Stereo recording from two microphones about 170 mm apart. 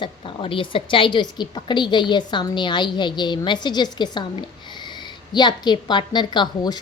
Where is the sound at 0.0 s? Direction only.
30° left (ahead or behind).